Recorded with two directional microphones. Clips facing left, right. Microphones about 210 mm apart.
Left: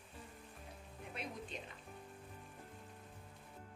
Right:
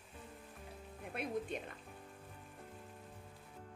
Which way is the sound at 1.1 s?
55° right (ahead or behind).